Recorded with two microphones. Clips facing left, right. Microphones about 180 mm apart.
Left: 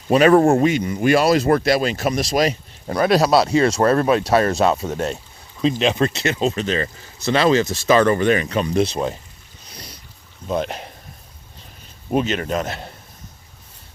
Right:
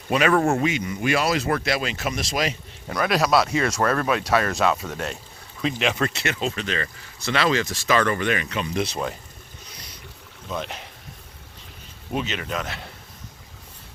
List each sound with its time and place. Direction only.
0.1 s speech: 35° left (ahead or behind)
7.6 s speech: 30° left (ahead or behind)
10.5 s speech: 45° left (ahead or behind)
12.1 s speech: 45° left (ahead or behind)